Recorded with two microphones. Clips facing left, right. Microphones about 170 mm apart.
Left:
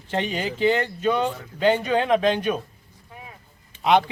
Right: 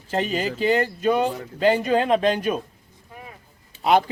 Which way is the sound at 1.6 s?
5° right (ahead or behind).